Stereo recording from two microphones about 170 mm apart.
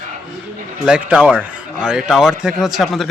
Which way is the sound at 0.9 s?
5° right (ahead or behind).